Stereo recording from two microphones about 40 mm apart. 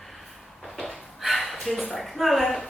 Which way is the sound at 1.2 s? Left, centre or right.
Centre.